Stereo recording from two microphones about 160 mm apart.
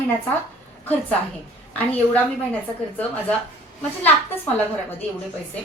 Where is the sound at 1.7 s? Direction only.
10° left (ahead or behind).